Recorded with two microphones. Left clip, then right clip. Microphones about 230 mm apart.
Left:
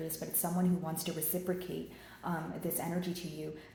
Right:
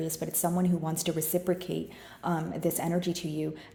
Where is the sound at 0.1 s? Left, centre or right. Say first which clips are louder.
Right 7 dB; right.